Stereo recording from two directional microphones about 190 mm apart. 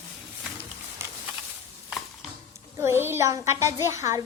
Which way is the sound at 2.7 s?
15° right (ahead or behind).